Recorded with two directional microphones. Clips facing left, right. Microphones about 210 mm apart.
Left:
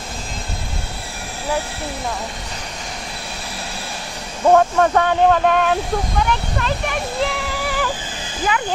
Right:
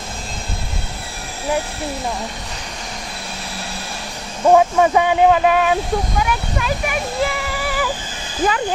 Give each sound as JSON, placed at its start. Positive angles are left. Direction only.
{"t": 4.5, "sound": "speech", "side_deg": -5}
{"t": 8.4, "sound": "speech", "side_deg": -45}